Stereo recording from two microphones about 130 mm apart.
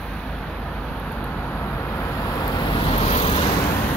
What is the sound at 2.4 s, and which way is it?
Vehicle, 30° left (ahead or behind).